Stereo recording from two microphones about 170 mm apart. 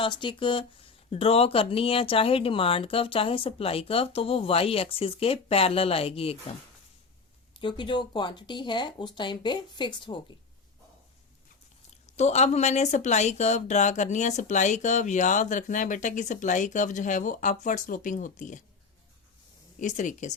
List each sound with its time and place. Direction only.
0.0 s speech: 30° left (ahead or behind)
7.5 s speech: 30° left (ahead or behind)
12.0 s speech: 40° left (ahead or behind)
19.8 s speech: 45° left (ahead or behind)